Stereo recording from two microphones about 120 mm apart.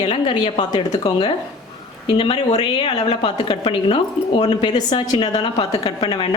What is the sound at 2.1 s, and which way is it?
A woman's voice, 50° left (ahead or behind).